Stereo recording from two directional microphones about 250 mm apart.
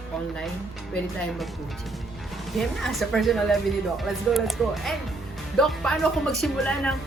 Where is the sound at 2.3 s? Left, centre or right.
Centre.